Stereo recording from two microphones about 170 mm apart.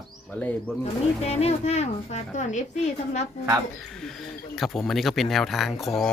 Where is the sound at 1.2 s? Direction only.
40° left (ahead or behind).